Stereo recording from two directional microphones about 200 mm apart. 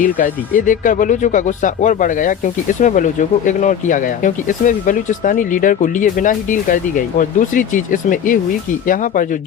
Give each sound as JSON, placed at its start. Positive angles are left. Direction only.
{"t": 0.0, "sound": "speech", "side_deg": 40}